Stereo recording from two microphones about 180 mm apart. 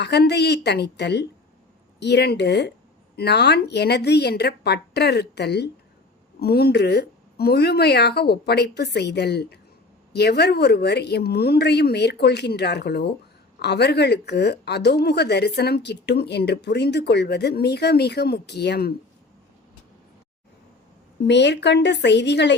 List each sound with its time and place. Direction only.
0.0 s a woman's voice: 65° left (ahead or behind)
21.2 s a woman's voice: 75° left (ahead or behind)